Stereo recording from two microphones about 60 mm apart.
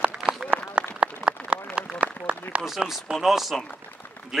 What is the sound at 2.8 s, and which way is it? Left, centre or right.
Speech, centre.